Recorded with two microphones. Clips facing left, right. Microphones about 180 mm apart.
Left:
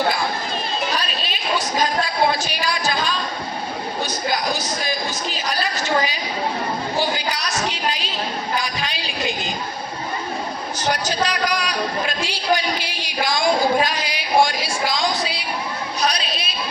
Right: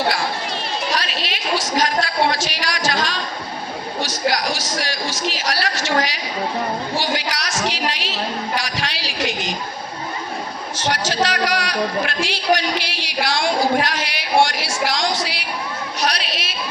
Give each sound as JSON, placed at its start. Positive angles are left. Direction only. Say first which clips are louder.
{"t": 0.9, "sound": "a sound", "louder": "right 1 dB", "side_deg": -80}
{"t": 4.0, "sound": "a woman's voice", "louder": "right 3 dB", "side_deg": -80}
{"t": 10.8, "sound": "a man's voice", "louder": "right 2 dB", "side_deg": -80}
{"t": 16.0, "sound": "chatter", "louder": "even", "side_deg": -75}